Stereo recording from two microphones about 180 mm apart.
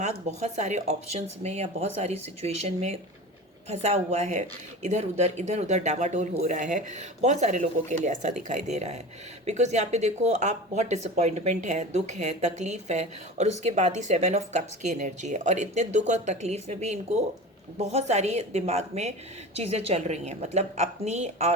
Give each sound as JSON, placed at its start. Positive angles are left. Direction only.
{"t": 0.0, "sound": "speech", "side_deg": -40}